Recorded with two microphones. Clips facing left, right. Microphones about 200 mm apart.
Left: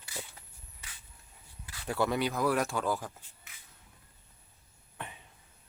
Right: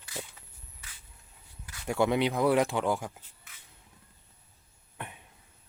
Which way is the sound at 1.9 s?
15° right (ahead or behind).